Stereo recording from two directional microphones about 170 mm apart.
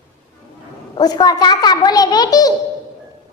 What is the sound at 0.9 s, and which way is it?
A child's voice, 25° left (ahead or behind).